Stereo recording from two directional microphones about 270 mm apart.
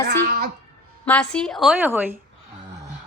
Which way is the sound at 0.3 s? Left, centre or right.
Right.